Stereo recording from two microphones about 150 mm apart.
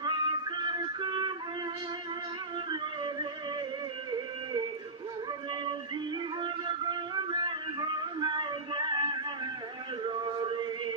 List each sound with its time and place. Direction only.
0.0 s music: 30° right (ahead or behind)
2.7 s music: 30° right (ahead or behind)
6.4 s music: 30° right (ahead or behind)
10.0 s male singing: 35° right (ahead or behind)